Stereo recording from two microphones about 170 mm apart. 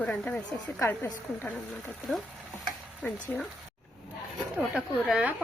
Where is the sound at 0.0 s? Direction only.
10° left (ahead or behind).